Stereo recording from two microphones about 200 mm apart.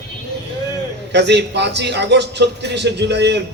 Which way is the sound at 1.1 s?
60° right (ahead or behind).